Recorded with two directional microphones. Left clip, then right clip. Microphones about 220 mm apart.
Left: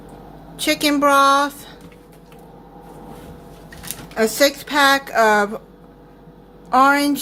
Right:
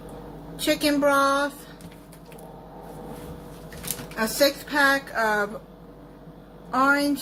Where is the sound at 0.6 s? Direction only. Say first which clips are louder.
Left 5 dB; 40° left (ahead or behind).